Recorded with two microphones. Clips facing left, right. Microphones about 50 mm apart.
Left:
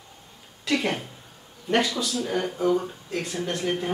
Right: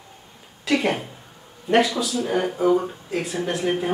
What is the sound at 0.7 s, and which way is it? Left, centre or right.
A woman's voice, centre.